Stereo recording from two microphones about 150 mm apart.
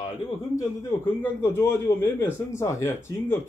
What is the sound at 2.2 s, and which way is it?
Speech, 20° left (ahead or behind).